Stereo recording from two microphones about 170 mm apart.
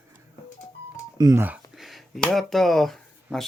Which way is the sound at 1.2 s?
15° right (ahead or behind).